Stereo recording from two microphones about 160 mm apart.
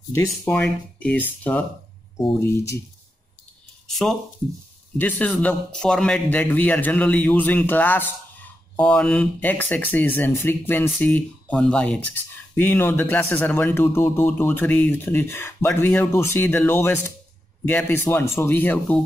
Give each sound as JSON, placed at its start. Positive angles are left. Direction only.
{"t": 0.1, "sound": "speech", "side_deg": 15}
{"t": 3.8, "sound": "speech", "side_deg": 0}